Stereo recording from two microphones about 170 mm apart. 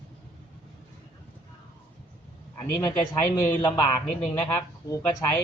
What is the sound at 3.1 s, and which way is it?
A man's voice, 20° left (ahead or behind).